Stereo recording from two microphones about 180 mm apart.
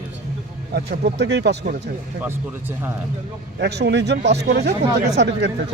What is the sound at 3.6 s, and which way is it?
Speech, 70° right (ahead or behind).